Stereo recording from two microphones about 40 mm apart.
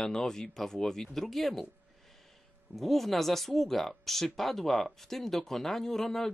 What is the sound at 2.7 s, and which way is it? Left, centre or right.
Speech, centre.